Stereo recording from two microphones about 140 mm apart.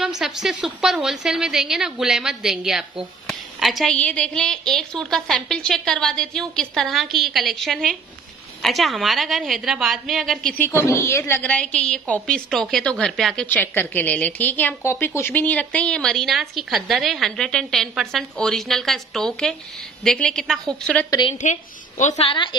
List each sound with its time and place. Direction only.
0.0 s a woman's voice: 5° right (ahead or behind)
10.6 s a woman's voice: 20° left (ahead or behind); by 13.5 s centre (ahead or behind)
13.5 s a woman's voice: 15° left (ahead or behind)
21.3 s a woman's voice: 60° left (ahead or behind)
22.2 s speech: 35° left (ahead or behind)